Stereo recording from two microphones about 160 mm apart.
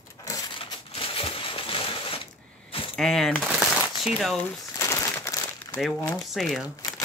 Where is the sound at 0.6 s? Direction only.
35° left (ahead or behind).